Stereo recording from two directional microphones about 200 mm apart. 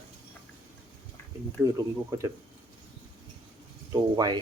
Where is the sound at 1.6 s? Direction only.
15° right (ahead or behind).